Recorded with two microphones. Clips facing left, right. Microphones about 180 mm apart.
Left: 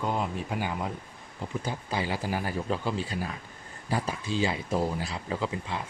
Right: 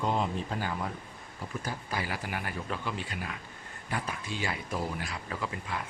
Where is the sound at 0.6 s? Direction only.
15° left (ahead or behind).